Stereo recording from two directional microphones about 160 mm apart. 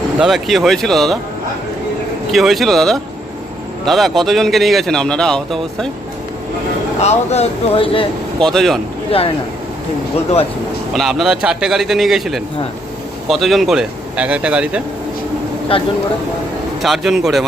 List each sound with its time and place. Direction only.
0.2 s speech: 5° right (ahead or behind)
2.3 s speech: centre (ahead or behind)
7.0 s speech: 40° left (ahead or behind)
8.4 s speech: centre (ahead or behind)
10.9 s speech: centre (ahead or behind)
15.7 s speech: 35° left (ahead or behind)
16.8 s speech: centre (ahead or behind)